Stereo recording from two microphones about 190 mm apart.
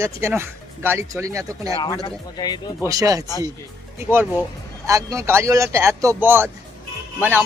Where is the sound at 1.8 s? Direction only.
20° left (ahead or behind).